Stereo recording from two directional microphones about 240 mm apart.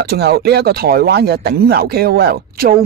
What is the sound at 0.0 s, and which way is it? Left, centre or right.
Speech, right.